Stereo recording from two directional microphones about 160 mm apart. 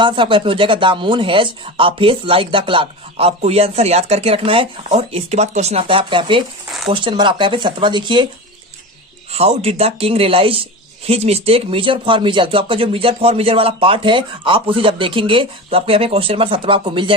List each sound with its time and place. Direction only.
0.0 s speech: 30° right (ahead or behind)
9.3 s speech: 40° right (ahead or behind)